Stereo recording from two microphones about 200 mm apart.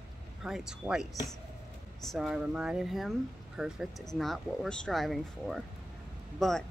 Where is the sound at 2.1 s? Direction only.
Centre (ahead or behind).